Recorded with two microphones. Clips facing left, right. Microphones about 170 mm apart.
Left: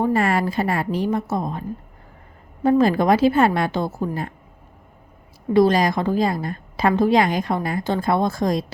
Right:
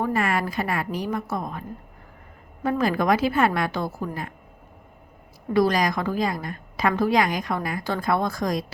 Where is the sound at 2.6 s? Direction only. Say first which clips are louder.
Left 6 dB; 30° left (ahead or behind).